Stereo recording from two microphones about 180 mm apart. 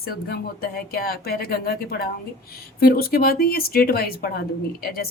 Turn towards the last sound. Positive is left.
turn(degrees=55)  # may be behind; listen again after turning